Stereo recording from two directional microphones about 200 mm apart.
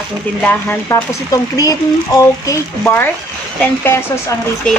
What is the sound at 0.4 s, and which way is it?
Speech, 10° left (ahead or behind).